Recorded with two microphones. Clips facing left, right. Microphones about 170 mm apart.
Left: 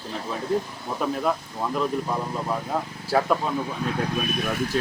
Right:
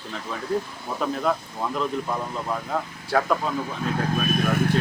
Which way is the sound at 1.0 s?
5° left (ahead or behind).